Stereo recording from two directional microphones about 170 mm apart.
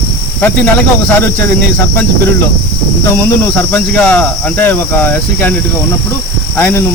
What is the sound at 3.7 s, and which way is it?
Speech, 10° left (ahead or behind).